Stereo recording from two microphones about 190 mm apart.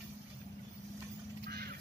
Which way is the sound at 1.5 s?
55° right (ahead or behind).